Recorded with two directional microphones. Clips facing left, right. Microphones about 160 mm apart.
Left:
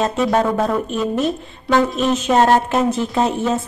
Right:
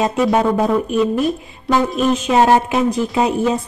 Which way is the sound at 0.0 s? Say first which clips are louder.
Right 2 dB; 5° right (ahead or behind).